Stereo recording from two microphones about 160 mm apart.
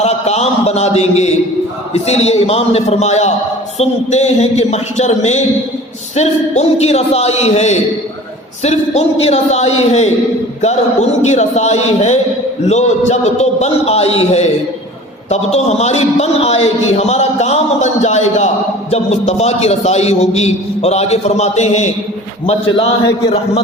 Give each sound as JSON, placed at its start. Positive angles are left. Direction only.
{"t": 0.0, "sound": "a man's voice", "side_deg": 40}